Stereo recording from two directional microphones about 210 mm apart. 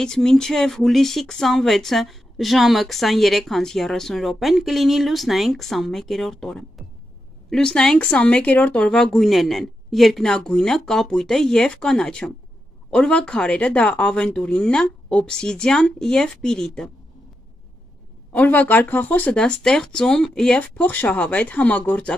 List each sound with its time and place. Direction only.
0.0 s speech: 5° left (ahead or behind)
18.3 s speech: 5° left (ahead or behind)